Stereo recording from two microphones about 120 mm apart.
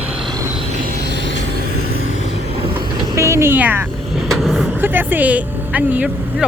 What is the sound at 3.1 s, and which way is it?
Vehicle, 25° right (ahead or behind).